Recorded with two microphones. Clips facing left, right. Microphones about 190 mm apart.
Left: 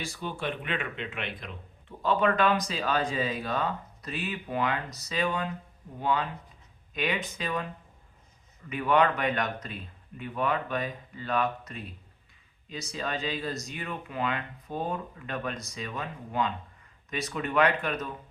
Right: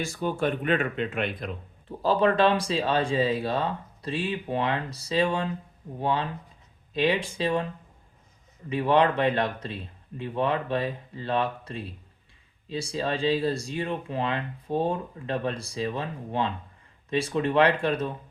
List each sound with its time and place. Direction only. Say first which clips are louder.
0.0 s speech: right 7 dB; 45° right (ahead or behind)
2.0 s speech: right 4 dB; 35° right (ahead or behind)
8.7 s speech: right 3 dB; 30° right (ahead or behind)